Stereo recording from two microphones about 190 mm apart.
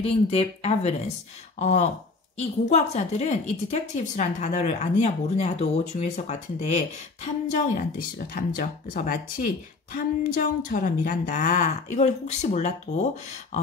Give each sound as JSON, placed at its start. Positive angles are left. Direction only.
{"t": 0.0, "sound": "a woman's voice", "side_deg": 30}